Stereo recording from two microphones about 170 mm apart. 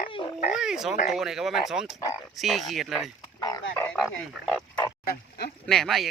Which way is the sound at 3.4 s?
25° left (ahead or behind).